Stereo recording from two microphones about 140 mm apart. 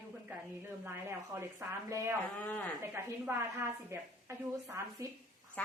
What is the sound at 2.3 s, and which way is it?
Speech, 10° left (ahead or behind).